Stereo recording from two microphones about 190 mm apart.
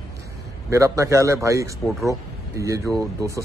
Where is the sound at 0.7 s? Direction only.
15° right (ahead or behind).